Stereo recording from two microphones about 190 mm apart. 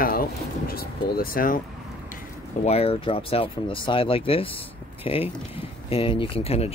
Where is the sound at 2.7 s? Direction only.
30° left (ahead or behind).